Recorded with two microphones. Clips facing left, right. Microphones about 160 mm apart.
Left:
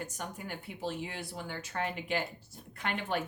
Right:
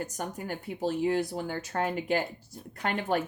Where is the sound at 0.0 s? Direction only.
40° right (ahead or behind).